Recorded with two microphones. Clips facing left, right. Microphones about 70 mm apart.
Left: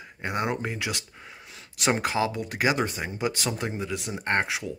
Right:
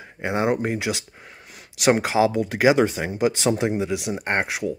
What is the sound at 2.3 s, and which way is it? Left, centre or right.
Speech, right.